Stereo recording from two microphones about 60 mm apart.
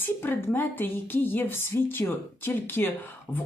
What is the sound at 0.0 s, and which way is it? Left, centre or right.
Speech, left.